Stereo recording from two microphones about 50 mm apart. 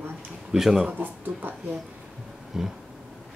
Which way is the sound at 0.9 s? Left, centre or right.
Right.